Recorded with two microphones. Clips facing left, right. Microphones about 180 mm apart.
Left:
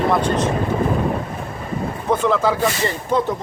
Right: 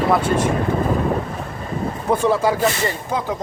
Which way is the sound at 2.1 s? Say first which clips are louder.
Even; 10° right (ahead or behind).